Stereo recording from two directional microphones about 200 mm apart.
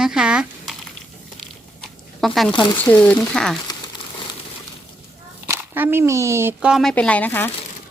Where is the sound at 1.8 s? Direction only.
Centre (ahead or behind).